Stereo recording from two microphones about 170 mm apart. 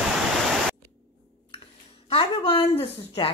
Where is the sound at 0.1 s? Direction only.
Centre (ahead or behind).